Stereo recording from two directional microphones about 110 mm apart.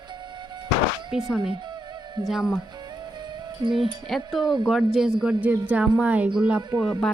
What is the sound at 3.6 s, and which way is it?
Music, 45° right (ahead or behind).